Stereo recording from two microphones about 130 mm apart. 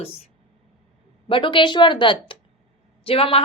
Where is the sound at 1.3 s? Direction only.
40° left (ahead or behind).